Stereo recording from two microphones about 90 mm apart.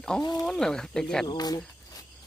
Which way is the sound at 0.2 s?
45° left (ahead or behind).